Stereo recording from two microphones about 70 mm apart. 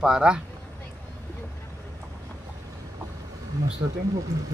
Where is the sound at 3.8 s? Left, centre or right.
Right.